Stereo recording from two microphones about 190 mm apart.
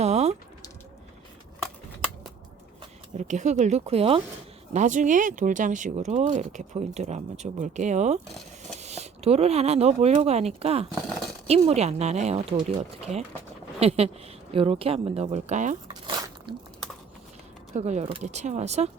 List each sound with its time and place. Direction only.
0.0 s typing: 35° right (ahead or behind)
3.2 s speech: 40° right (ahead or behind)
13.7 s speech: 35° right (ahead or behind)
15.9 s squish: 20° right (ahead or behind)
17.7 s speech: 35° right (ahead or behind)